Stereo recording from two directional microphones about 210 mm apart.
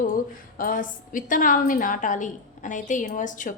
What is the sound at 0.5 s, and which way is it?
A woman's voice, 40° left (ahead or behind).